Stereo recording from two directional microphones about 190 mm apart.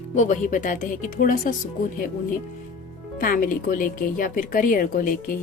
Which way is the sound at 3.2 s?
45° left (ahead or behind).